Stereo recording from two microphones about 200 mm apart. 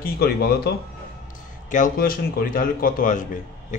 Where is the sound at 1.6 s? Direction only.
40° left (ahead or behind).